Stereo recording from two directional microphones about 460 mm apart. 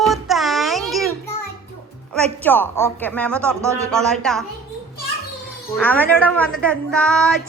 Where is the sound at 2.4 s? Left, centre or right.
Centre.